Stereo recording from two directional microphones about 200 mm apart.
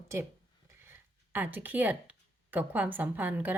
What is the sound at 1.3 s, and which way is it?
Speech, 10° right (ahead or behind).